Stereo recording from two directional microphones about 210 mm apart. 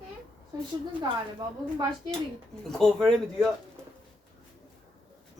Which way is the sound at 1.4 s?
20° right (ahead or behind).